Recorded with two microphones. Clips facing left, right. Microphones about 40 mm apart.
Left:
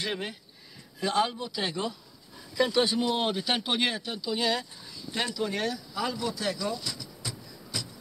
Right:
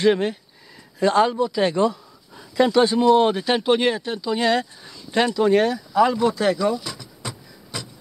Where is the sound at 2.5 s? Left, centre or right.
Right.